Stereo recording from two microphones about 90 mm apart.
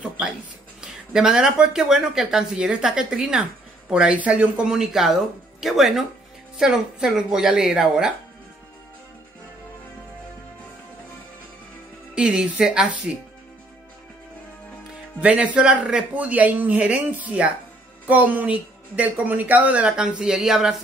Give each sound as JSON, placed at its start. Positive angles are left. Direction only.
{"t": 0.7, "sound": "a woman's voice", "side_deg": -5}
{"t": 12.2, "sound": "a woman's voice", "side_deg": -10}
{"t": 15.1, "sound": "a woman's voice", "side_deg": -15}